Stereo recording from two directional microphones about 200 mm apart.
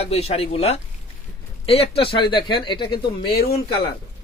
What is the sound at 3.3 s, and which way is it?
Speech, 50° left (ahead or behind).